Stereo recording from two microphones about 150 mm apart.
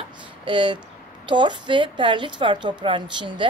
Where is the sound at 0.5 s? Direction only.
35° right (ahead or behind).